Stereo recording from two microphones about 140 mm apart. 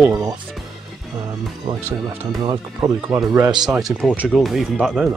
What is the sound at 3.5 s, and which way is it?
Speech, 5° right (ahead or behind).